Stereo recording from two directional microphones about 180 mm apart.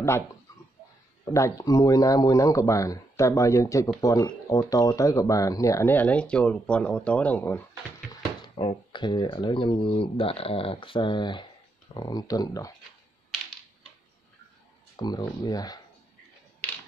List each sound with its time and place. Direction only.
1.3 s speech: 20° left (ahead or behind)
8.1 s speech: 25° left (ahead or behind)
15.0 s speech: 20° left (ahead or behind)